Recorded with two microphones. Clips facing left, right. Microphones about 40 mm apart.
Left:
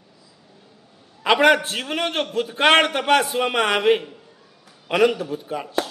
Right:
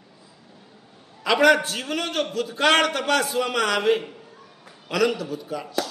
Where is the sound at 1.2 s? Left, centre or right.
Left.